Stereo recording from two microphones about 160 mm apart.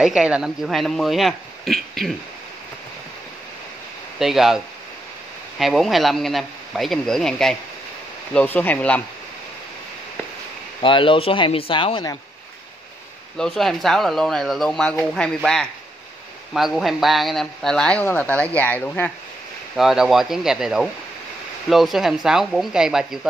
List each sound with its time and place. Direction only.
0.0 s speech: 5° right (ahead or behind)
4.2 s speech: centre (ahead or behind)
5.6 s speech: centre (ahead or behind)
10.8 s speech: 30° left (ahead or behind)
13.4 s speech: 5° left (ahead or behind)
19.8 s speech: centre (ahead or behind)